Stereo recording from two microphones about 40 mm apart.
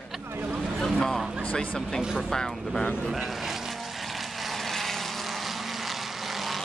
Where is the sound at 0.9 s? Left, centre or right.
Centre.